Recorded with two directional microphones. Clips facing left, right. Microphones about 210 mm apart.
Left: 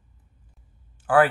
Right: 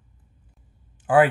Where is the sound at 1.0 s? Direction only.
20° right (ahead or behind).